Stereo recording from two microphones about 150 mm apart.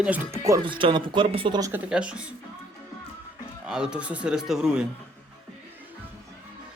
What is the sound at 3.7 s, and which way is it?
Speech, 5° right (ahead or behind).